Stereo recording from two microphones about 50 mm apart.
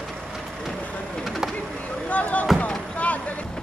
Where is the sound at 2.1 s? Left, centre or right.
Left.